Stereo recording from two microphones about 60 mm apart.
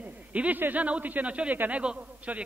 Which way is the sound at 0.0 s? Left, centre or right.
Right.